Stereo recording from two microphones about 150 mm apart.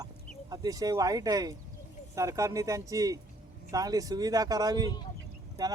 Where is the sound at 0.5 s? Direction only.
25° right (ahead or behind).